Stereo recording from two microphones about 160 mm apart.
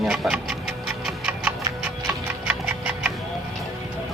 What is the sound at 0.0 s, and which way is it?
Music, 5° right (ahead or behind).